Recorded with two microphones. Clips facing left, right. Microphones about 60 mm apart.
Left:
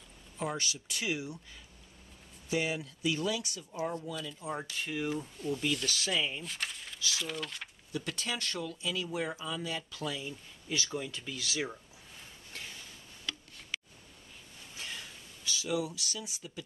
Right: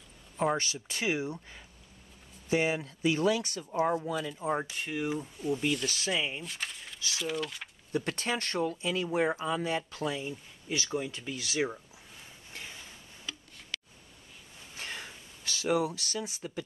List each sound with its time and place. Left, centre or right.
0.4 s speech: right
4.1 s speech: right
5.9 s speech: right
6.1 s speech: centre
6.4 s a sound: centre
7.2 s speech: centre
7.9 s speech: right
14.8 s a sound: right
15.4 s speech: right